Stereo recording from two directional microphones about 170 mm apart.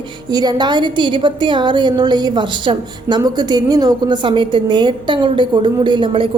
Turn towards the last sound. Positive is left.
turn(degrees=-30)  # may be behind; listen again after turning